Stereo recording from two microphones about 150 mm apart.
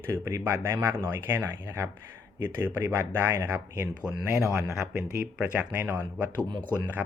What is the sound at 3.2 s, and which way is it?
Speech, 15° right (ahead or behind).